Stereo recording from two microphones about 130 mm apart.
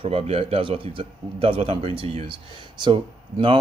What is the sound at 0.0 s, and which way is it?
Speech, 50° right (ahead or behind).